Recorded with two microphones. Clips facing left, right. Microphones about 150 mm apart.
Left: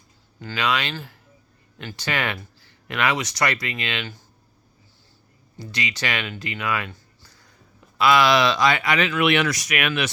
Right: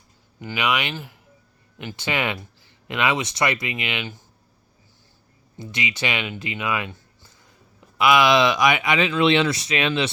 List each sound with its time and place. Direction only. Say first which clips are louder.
0.3 s speech: even; 15° right (ahead or behind)
5.5 s speech: right 1 dB; 20° right (ahead or behind)